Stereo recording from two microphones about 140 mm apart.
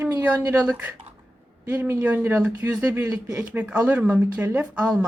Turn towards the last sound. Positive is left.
turn(degrees=-10)  # may be behind; listen again after turning